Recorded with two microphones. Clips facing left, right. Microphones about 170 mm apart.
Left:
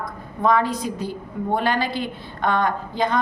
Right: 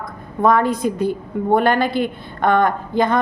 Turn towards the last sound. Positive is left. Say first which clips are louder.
# right 5 dB
turn(degrees=-55)  # may be behind; listen again after turning